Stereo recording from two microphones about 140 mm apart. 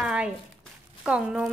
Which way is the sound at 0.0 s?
5° right (ahead or behind).